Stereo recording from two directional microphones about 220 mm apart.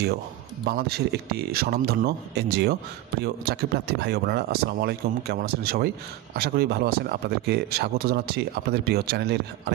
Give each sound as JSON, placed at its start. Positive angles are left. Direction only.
{"t": 0.7, "sound": "a man's voice", "side_deg": -45}